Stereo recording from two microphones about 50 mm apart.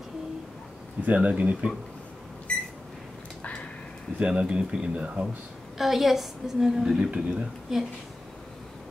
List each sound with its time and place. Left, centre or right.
1.0 s speech: right
2.5 s a sound: left
4.2 s speech: right
5.8 s a woman's voice: centre
7.1 s speech: centre
7.7 s speech: centre